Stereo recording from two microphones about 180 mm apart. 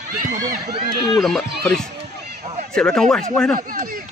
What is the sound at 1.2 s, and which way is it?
Speech, centre (ahead or behind).